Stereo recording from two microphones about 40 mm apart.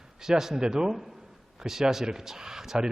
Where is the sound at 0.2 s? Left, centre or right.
Centre.